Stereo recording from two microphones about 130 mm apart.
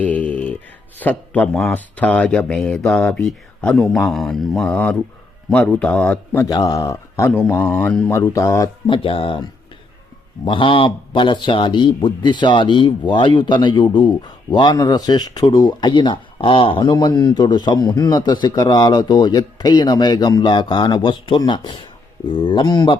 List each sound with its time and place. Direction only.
0.0 s music: 10° left (ahead or behind)
0.9 s speech: 10° left (ahead or behind)
6.4 s speech: 30° left (ahead or behind)
8.9 s speech: 45° left (ahead or behind)